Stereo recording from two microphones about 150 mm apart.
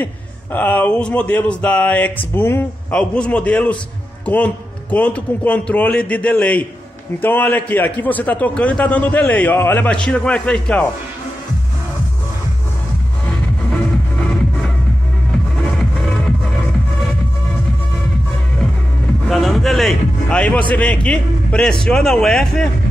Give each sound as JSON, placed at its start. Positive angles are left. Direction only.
{"t": 0.0, "sound": "a man's voice", "side_deg": 10}
{"t": 4.9, "sound": "a man's voice", "side_deg": 10}
{"t": 15.8, "sound": "music", "side_deg": 0}
{"t": 19.2, "sound": "music", "side_deg": 0}
{"t": 20.7, "sound": "a man's voice", "side_deg": 10}